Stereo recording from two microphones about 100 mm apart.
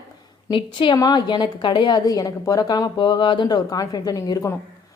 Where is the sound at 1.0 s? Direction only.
45° left (ahead or behind).